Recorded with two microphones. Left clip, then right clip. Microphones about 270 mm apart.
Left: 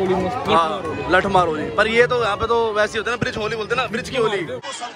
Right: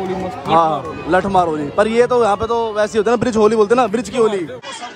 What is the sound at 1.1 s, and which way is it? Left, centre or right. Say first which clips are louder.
A man's voice: right 2 dB; centre.